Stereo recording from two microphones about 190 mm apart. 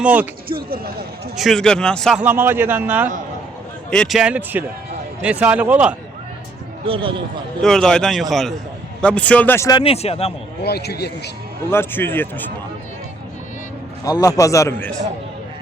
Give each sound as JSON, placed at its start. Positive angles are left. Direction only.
{"t": 0.0, "sound": "a man's voice", "side_deg": -10}
{"t": 0.4, "sound": "speech", "side_deg": -50}
{"t": 1.4, "sound": "a man's voice", "side_deg": 0}
{"t": 2.2, "sound": "a man's voice", "side_deg": -10}
{"t": 3.8, "sound": "a man's voice", "side_deg": 5}
{"t": 6.8, "sound": "speech", "side_deg": -30}
{"t": 7.6, "sound": "a man's voice", "side_deg": 5}
{"t": 9.8, "sound": "a man's voice", "side_deg": 30}
{"t": 10.6, "sound": "speech", "side_deg": 60}
{"t": 11.7, "sound": "a man's voice", "side_deg": 10}
{"t": 14.0, "sound": "a man's voice", "side_deg": 20}